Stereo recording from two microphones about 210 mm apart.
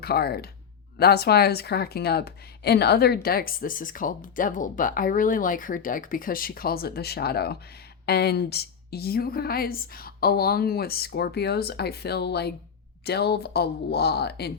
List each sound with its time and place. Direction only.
0.0 s speech: 50° left (ahead or behind)